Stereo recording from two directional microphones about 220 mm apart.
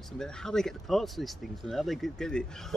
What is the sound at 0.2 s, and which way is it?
Speech, centre (ahead or behind).